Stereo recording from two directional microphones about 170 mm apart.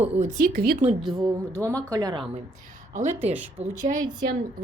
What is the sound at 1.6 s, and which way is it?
Speech, 20° right (ahead or behind).